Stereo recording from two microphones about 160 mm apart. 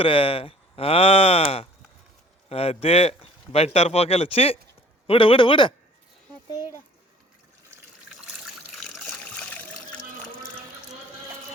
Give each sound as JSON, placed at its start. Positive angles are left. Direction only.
{"t": 0.0, "sound": "speech", "side_deg": 35}
{"t": 8.8, "sound": "trickle", "side_deg": 0}